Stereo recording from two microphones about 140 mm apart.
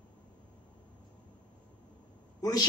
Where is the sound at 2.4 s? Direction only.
25° left (ahead or behind).